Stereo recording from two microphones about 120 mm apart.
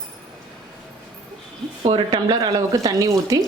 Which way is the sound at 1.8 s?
50° right (ahead or behind).